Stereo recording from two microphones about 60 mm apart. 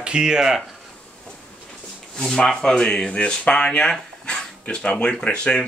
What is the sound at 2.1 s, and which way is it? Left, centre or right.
Speech, centre.